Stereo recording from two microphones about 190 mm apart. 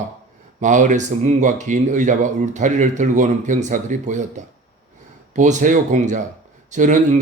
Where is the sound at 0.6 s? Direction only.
40° right (ahead or behind).